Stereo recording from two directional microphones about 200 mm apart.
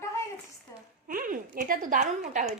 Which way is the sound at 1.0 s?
45° right (ahead or behind).